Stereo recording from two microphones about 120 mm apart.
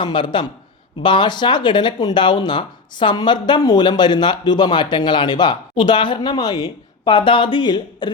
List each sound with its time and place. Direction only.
0.0 s speech: 40° left (ahead or behind)